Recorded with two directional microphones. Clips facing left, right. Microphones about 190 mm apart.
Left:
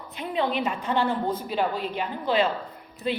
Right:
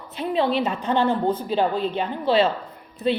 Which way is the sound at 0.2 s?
30° right (ahead or behind).